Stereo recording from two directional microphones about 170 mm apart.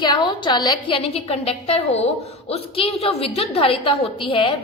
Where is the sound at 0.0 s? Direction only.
25° left (ahead or behind).